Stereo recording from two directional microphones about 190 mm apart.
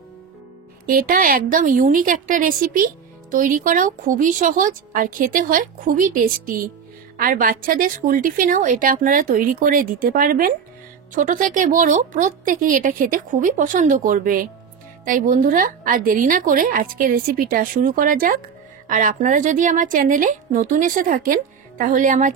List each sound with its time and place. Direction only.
0.8 s a woman's voice: 50° right (ahead or behind)